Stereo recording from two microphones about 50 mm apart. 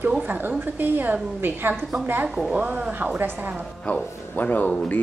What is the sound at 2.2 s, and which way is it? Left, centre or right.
Speech, centre.